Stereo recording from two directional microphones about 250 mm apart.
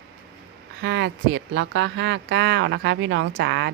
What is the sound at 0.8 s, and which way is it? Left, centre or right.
Speech, right.